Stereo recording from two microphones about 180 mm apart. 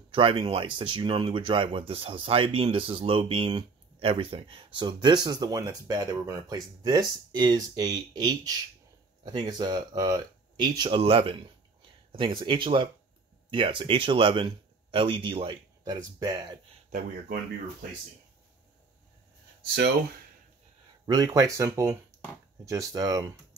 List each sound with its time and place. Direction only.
0.1 s speech: 30° right (ahead or behind)
21.0 s speech: 20° right (ahead or behind)